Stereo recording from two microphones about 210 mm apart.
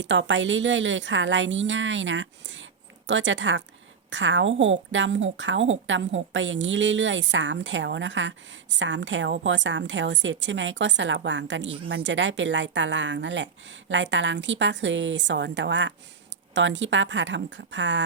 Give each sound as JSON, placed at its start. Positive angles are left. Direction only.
{"t": 0.0, "sound": "a woman's voice", "side_deg": -60}